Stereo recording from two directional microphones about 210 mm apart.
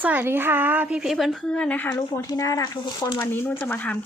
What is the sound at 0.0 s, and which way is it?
A woman's voice, 10° right (ahead or behind).